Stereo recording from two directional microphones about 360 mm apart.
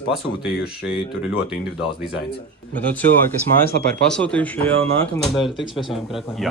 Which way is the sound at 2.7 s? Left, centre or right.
Centre.